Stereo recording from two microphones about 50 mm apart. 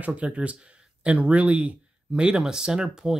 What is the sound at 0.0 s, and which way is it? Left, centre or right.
Speech, right.